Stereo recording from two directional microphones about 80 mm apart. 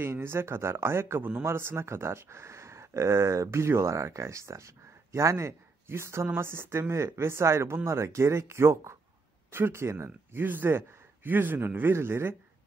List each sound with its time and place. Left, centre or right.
0.0 s a man's voice: right